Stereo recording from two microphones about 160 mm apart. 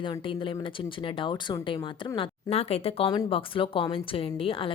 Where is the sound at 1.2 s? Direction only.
30° left (ahead or behind).